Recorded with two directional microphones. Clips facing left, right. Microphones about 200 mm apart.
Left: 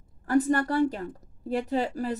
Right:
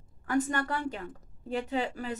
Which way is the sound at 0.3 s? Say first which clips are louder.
Left 6 dB; 40° left (ahead or behind).